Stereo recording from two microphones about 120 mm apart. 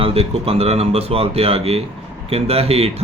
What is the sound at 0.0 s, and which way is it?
Speech, 55° right (ahead or behind).